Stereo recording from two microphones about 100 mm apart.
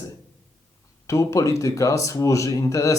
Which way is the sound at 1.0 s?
30° left (ahead or behind).